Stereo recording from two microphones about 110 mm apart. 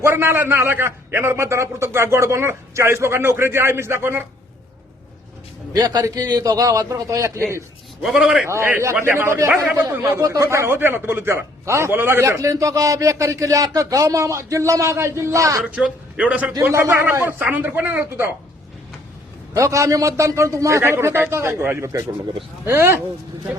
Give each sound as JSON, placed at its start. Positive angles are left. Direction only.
{"t": 0.0, "sound": "a man's voice", "side_deg": -20}
{"t": 5.7, "sound": "a man's voice", "side_deg": -35}
{"t": 8.0, "sound": "a man's voice", "side_deg": -5}
{"t": 8.4, "sound": "a man's voice", "side_deg": -20}
{"t": 15.6, "sound": "a man's voice", "side_deg": -10}
{"t": 19.5, "sound": "a man's voice", "side_deg": -30}